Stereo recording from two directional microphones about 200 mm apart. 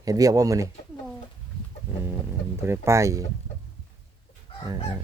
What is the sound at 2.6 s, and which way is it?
Speech, 15° right (ahead or behind).